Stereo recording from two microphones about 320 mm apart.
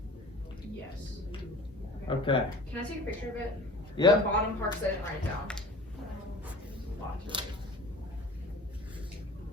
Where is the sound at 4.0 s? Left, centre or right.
Centre.